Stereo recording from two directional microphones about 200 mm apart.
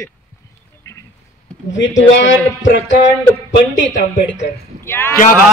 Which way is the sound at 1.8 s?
70° left (ahead or behind).